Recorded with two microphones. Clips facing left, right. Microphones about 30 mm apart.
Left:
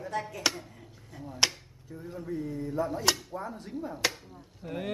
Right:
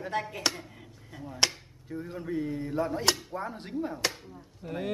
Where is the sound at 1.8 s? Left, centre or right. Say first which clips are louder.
Right 3 dB; right.